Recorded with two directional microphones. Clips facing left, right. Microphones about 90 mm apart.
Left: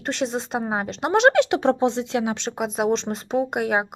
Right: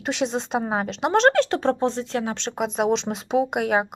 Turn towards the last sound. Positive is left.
turn(degrees=0)  # may be behind; listen again after turning